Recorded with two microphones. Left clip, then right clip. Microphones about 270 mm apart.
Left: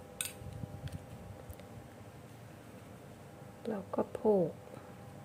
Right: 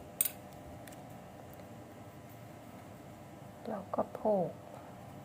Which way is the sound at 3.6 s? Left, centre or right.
Left.